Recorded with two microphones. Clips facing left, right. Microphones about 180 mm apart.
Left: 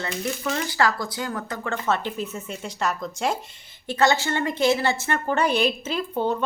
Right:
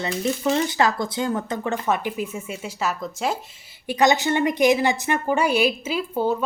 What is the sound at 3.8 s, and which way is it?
A woman's voice, 15° right (ahead or behind).